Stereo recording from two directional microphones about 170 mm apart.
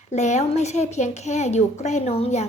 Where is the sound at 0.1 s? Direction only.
40° left (ahead or behind).